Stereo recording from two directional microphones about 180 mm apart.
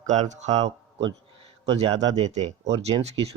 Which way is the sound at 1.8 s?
35° right (ahead or behind).